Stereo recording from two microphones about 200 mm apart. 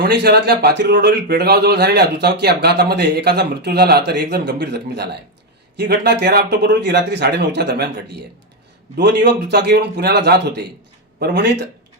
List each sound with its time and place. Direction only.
0.0 s a man's voice: 55° right (ahead or behind)